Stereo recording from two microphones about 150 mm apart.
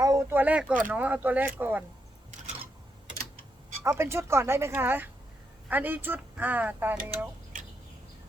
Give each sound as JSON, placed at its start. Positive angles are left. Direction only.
{"t": 0.0, "sound": "speech", "side_deg": -20}
{"t": 3.8, "sound": "speech", "side_deg": -15}